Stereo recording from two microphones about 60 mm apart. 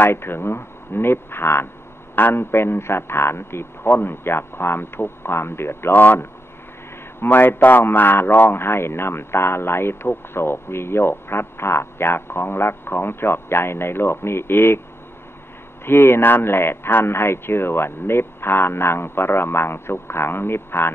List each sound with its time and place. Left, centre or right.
0.0 s speech: left
15.8 s speech: left